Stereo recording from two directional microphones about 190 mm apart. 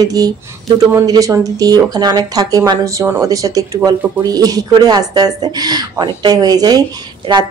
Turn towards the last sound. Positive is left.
turn(degrees=-25)  # may be behind; listen again after turning